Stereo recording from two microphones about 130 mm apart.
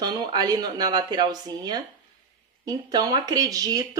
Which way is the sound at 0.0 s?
30° right (ahead or behind).